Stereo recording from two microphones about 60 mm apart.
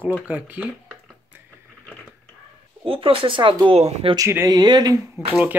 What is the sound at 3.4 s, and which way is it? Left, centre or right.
Speech, right.